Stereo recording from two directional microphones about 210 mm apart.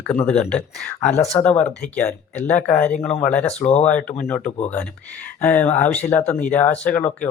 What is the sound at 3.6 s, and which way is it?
Speech, 30° left (ahead or behind).